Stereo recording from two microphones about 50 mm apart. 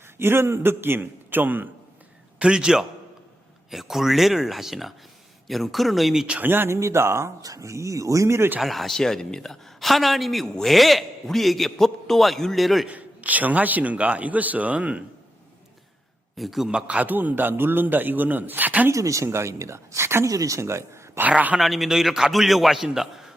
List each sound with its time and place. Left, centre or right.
0.2 s a man's voice: right
2.4 s a man's voice: centre
3.7 s a man's voice: centre
6.4 s a man's voice: right
6.7 s speech: right
8.6 s a man's voice: centre
12.9 s a man's voice: right
16.4 s a man's voice: centre
16.8 s a man's voice: right
18.9 s speech: right
21.2 s speech: right
21.6 s a man's voice: centre